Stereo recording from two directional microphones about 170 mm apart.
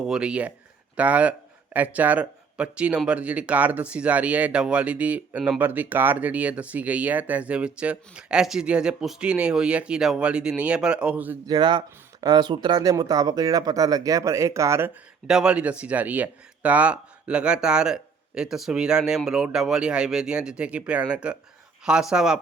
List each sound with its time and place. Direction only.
0.0 s a man's voice: 5° right (ahead or behind)
11.4 s a man's voice: 25° right (ahead or behind); by 22.4 s 5° right (ahead or behind)